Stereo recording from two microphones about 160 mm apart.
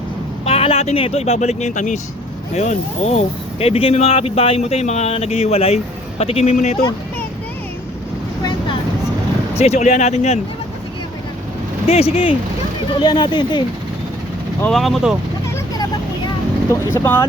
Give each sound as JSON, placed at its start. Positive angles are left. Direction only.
{"t": 0.4, "sound": "speech", "side_deg": 40}
{"t": 9.6, "sound": "speech", "side_deg": 45}
{"t": 11.9, "sound": "speech", "side_deg": 40}
{"t": 13.0, "sound": "speech", "side_deg": 25}
{"t": 14.7, "sound": "speech", "side_deg": 0}
{"t": 16.9, "sound": "speech", "side_deg": 15}